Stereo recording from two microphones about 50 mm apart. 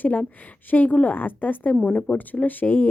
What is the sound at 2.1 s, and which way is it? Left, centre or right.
Speech, left.